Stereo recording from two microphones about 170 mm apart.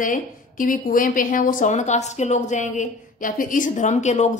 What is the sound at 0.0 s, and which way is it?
A woman's voice, 50° left (ahead or behind).